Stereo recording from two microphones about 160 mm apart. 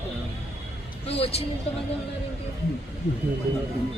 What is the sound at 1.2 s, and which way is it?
Speech, 40° left (ahead or behind).